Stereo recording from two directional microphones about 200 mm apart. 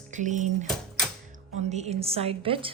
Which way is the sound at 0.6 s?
Centre (ahead or behind).